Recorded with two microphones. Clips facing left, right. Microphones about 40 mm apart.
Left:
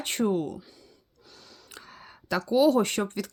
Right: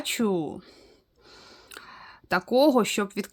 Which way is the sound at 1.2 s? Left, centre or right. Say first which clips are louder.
Right 2 dB; right.